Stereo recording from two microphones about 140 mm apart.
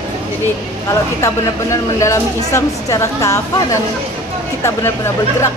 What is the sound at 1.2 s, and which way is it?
A woman's voice, 20° left (ahead or behind).